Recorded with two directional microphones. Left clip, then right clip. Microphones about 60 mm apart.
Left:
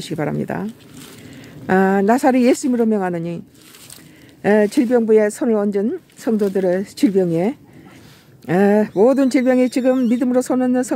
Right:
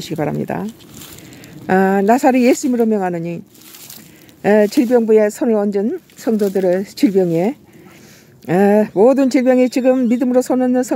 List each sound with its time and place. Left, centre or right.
0.0 s speech: right
1.7 s speech: right
4.4 s speech: right